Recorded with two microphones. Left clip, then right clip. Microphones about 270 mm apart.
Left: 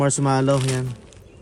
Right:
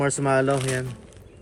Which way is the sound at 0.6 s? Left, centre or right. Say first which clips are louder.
Left 1 dB; centre.